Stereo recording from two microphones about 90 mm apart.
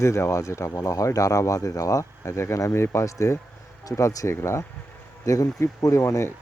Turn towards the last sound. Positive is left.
turn(degrees=30)  # may be behind; listen again after turning